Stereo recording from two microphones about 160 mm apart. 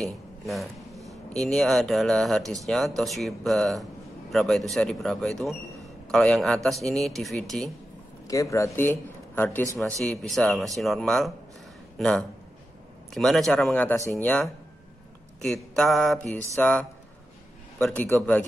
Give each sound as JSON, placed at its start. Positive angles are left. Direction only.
{"t": 0.0, "sound": "speech", "side_deg": 0}
{"t": 8.3, "sound": "speech", "side_deg": 20}
{"t": 13.7, "sound": "a man's voice", "side_deg": 15}
{"t": 17.8, "sound": "a man's voice", "side_deg": 10}